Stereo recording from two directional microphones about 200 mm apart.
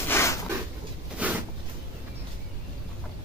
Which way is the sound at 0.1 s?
15° left (ahead or behind).